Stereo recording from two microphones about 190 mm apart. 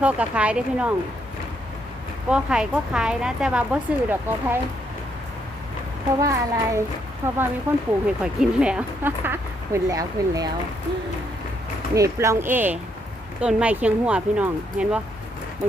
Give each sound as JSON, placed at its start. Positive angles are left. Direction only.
{"t": 0.0, "sound": "speech", "side_deg": -5}
{"t": 2.3, "sound": "speech", "side_deg": -5}
{"t": 6.2, "sound": "speech", "side_deg": -15}
{"t": 11.9, "sound": "speech", "side_deg": -15}